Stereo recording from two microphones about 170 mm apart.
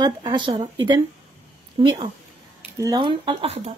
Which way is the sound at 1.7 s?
30° right (ahead or behind).